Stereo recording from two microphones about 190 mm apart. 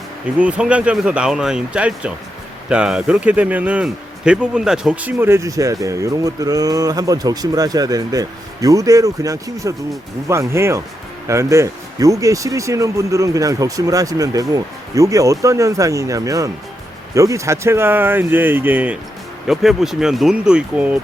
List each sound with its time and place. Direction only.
0.3 s speech: 5° right (ahead or behind)